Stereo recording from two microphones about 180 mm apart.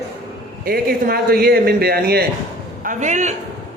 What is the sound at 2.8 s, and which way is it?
Speech, 45° right (ahead or behind).